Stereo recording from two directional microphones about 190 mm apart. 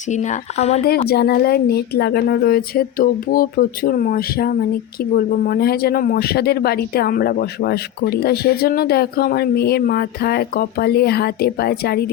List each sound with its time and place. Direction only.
0.1 s speech: 40° left (ahead or behind)
0.9 s speech: 55° left (ahead or behind)